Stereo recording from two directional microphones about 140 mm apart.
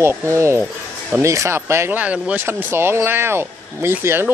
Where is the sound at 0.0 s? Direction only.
20° right (ahead or behind).